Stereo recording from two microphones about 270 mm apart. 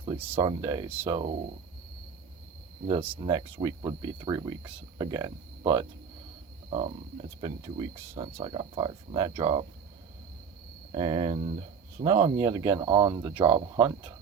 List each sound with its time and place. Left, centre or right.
0.0 s speech: centre
2.8 s speech: centre
10.9 s speech: centre